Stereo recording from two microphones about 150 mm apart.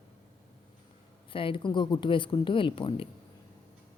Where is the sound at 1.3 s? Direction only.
35° left (ahead or behind).